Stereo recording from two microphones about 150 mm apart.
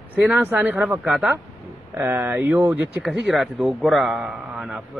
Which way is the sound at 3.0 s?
Centre (ahead or behind).